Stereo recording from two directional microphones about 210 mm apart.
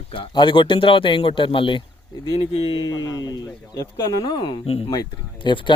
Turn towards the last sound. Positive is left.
turn(degrees=20)  # may be behind; listen again after turning